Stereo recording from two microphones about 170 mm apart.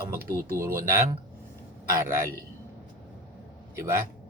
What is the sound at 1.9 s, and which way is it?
Speech, 15° right (ahead or behind).